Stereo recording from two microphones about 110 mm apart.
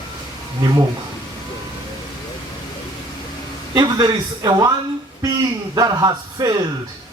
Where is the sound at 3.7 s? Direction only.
40° right (ahead or behind).